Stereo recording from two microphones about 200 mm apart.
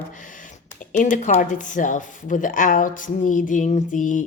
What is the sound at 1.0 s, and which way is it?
Speech, 40° left (ahead or behind).